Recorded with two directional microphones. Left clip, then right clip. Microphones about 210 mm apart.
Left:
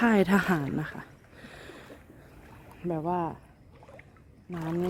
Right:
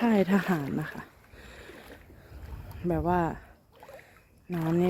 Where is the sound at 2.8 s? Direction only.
10° right (ahead or behind).